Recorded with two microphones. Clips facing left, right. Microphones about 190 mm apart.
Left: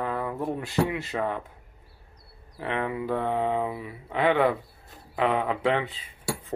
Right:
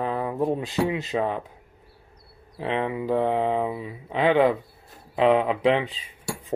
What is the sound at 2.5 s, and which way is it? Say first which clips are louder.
Speech: right 3 dB; 20° right (ahead or behind).